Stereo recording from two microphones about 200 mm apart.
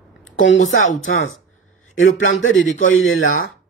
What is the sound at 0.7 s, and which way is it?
Speech, 80° left.